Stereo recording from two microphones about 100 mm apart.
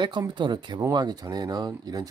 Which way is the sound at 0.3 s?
50° right (ahead or behind).